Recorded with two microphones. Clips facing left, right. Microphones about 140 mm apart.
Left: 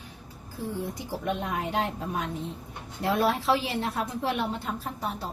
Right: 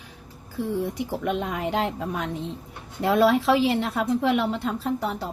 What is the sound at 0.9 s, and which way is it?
A woman's voice, 75° right (ahead or behind).